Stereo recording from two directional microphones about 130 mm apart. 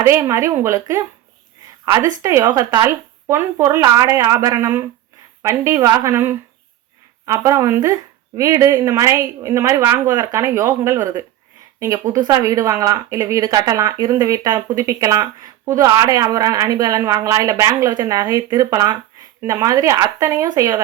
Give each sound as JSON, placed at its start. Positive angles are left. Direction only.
{"t": 0.0, "sound": "speech", "side_deg": -25}
{"t": 12.2, "sound": "speech", "side_deg": -30}
{"t": 20.5, "sound": "speech", "side_deg": -35}